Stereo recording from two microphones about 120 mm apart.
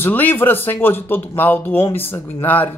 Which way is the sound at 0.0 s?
15° left (ahead or behind).